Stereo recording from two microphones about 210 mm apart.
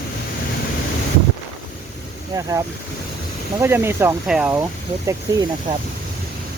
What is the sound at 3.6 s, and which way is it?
Speech, 10° right (ahead or behind).